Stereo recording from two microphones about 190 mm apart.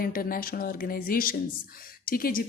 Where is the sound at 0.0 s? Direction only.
50° left (ahead or behind).